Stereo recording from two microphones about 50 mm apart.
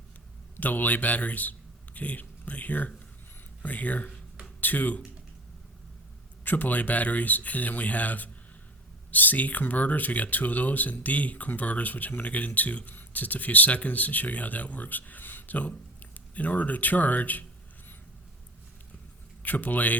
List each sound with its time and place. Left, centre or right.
0.5 s a man's voice: left
6.4 s speech: left
19.4 s speech: left